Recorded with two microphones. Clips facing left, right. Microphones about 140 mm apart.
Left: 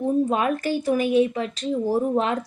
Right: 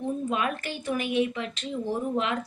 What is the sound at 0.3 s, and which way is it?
Speech, 35° left (ahead or behind).